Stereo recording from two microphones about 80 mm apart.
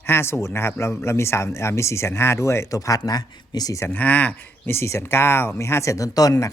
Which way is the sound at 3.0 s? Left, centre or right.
Left.